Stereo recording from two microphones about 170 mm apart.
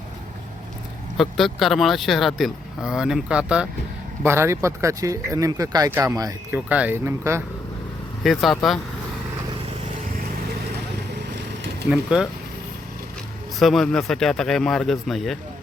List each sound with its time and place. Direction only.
1.1 s speech: centre (ahead or behind); by 7.4 s 15° right (ahead or behind)
8.2 s speech: centre (ahead or behind)
11.9 s speech: 5° right (ahead or behind)
13.6 s speech: centre (ahead or behind)